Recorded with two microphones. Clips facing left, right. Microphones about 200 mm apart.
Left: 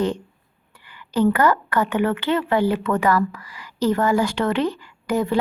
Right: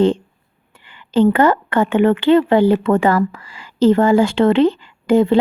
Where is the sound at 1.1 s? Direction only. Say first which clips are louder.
Right 5 dB; 25° right (ahead or behind).